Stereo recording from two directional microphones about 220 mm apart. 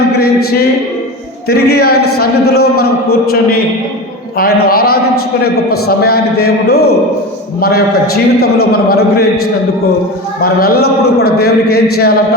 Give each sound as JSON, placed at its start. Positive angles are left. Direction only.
{"t": 1.5, "sound": "a man's voice", "side_deg": 45}
{"t": 4.4, "sound": "a man's voice", "side_deg": 45}
{"t": 10.4, "sound": "a man's voice", "side_deg": 45}